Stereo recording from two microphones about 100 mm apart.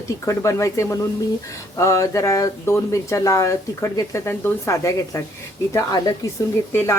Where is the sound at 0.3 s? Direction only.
30° left (ahead or behind).